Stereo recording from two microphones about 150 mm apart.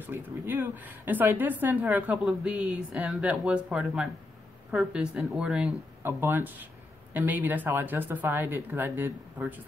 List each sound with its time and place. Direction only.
0.0 s a woman's voice: 15° right (ahead or behind)